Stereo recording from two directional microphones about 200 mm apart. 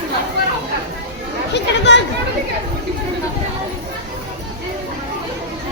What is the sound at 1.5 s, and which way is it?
Speech, 60° left (ahead or behind).